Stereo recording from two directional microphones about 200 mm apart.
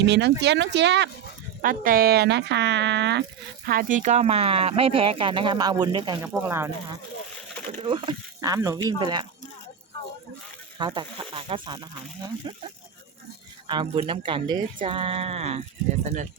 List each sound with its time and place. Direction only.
0.0 s speech: 60° right (ahead or behind)
1.6 s speech: 45° right (ahead or behind)
3.7 s speech: 45° right (ahead or behind); by 6.1 s 20° right (ahead or behind)
7.8 s speech: 25° right (ahead or behind)
10.8 s speech: 25° right (ahead or behind)
13.7 s speech: 25° right (ahead or behind)